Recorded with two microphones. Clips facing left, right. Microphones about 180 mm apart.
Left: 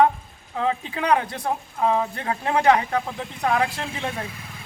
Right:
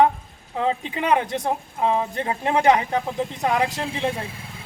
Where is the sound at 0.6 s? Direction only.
20° right (ahead or behind).